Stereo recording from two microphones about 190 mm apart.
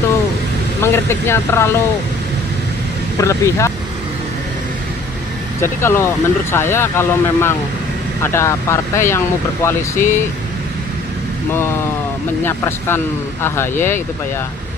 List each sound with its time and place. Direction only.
0.8 s speech: 15° left (ahead or behind)
3.2 s speech: 15° left (ahead or behind)
5.6 s speech: 15° left (ahead or behind)
12.4 s speech: 10° left (ahead or behind)